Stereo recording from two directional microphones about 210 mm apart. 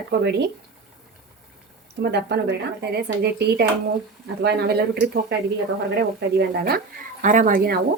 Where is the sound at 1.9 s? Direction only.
55° right (ahead or behind).